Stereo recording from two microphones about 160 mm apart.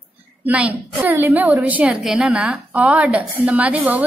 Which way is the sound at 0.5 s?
10° right (ahead or behind).